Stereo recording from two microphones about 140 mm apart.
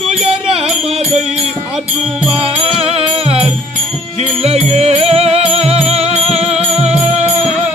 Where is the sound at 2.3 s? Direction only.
40° right (ahead or behind).